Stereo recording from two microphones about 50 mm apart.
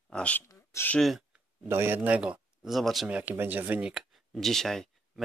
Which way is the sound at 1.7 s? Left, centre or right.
Right.